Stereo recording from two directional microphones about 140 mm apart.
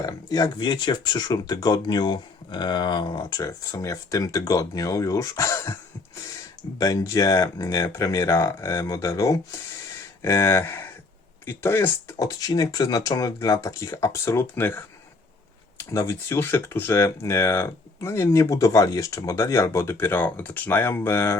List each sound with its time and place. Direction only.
0.0 s speech: 25° left (ahead or behind)
6.7 s speech: 25° left (ahead or behind)